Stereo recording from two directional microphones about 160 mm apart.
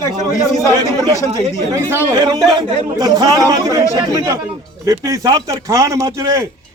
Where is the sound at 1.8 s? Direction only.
15° right (ahead or behind).